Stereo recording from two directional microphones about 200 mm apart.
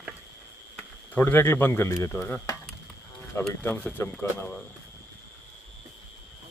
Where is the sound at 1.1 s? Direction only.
10° left (ahead or behind).